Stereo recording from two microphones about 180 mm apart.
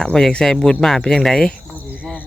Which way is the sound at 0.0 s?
5° left (ahead or behind).